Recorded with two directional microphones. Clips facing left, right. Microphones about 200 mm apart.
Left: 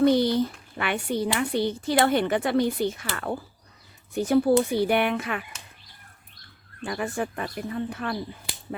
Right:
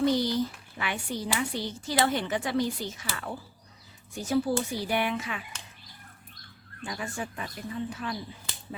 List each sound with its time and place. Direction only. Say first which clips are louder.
0.0 s speech: left 5 dB; 60° left (ahead or behind)
6.8 s speech: left 7 dB; 60° left (ahead or behind)